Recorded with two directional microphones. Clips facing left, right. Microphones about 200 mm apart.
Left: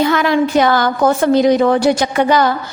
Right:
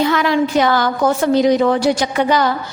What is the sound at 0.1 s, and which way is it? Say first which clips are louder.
A woman's voice: left 2 dB; 50° left (ahead or behind).